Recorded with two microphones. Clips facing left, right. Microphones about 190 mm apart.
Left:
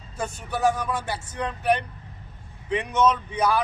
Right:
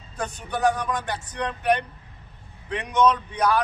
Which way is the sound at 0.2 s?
5° left (ahead or behind).